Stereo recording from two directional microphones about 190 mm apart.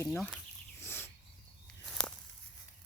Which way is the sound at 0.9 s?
10° left (ahead or behind).